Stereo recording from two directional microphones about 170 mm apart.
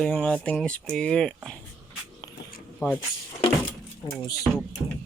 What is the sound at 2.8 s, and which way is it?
Speech, 15° left (ahead or behind).